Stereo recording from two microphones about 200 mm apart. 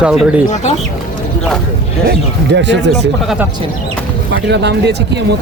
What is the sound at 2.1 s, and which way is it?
Speech, 60° right (ahead or behind).